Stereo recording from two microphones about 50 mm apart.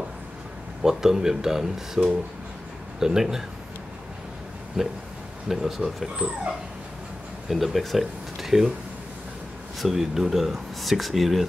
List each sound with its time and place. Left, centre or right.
0.8 s speech: centre
4.8 s speech: centre
6.1 s speech: centre
7.4 s speech: centre
9.8 s speech: centre